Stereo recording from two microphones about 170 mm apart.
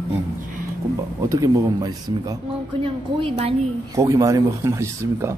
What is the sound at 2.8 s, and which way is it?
Speech, 35° right (ahead or behind).